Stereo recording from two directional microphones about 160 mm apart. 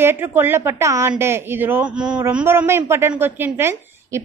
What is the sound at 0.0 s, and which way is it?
A woman's voice, 15° right (ahead or behind).